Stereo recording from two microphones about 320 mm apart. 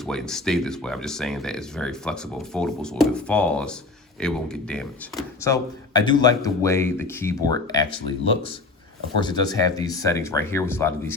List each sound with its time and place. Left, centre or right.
0.0 s speech: centre
9.2 s speech: centre